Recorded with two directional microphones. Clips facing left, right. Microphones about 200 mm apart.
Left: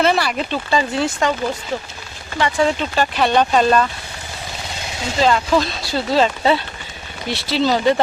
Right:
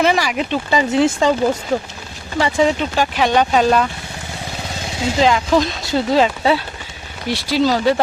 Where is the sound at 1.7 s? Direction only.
50° right (ahead or behind).